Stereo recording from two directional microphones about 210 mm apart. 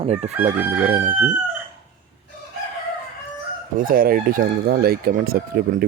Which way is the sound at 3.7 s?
40° right (ahead or behind).